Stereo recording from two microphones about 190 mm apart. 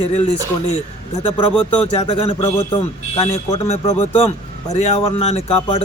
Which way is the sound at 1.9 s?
35° left (ahead or behind).